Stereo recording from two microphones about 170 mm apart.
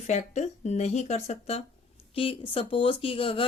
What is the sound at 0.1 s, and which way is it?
Speech, 45° left (ahead or behind).